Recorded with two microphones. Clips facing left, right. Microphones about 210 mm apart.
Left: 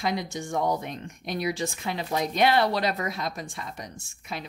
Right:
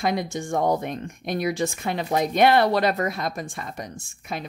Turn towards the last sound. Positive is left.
turn(degrees=-50)  # may be behind; listen again after turning